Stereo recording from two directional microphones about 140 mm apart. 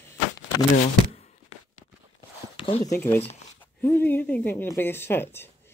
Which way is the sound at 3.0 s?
15° left (ahead or behind).